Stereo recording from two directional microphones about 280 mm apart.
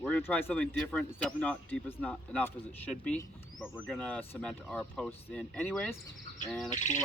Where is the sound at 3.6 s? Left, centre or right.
Centre.